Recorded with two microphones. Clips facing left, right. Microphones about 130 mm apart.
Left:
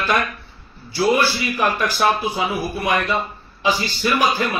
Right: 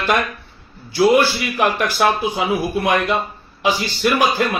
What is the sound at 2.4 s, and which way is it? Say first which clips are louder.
Speech: right 3 dB; 20° right (ahead or behind).